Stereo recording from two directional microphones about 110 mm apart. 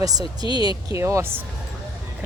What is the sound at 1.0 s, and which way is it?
Speech, 25° right (ahead or behind).